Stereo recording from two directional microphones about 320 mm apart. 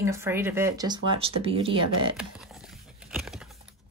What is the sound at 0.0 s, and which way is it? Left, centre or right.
Speech, centre.